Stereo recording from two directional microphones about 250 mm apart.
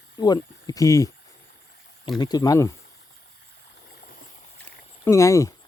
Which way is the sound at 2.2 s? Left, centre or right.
Centre.